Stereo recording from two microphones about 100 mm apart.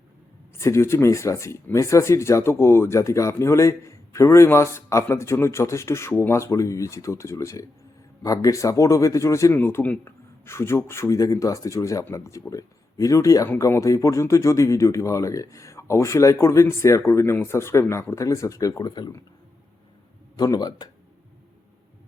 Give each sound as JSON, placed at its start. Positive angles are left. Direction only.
{"t": 0.5, "sound": "speech", "side_deg": 30}
{"t": 20.3, "sound": "speech", "side_deg": 40}